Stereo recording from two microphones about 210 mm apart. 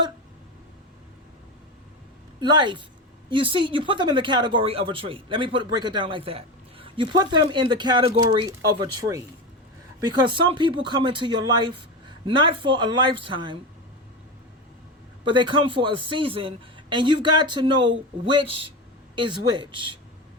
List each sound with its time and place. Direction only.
2.4 s speech: 20° right (ahead or behind)
15.2 s speech: 25° right (ahead or behind)